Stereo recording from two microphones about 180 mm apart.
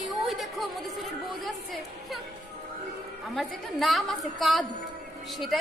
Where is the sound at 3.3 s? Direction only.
Centre (ahead or behind).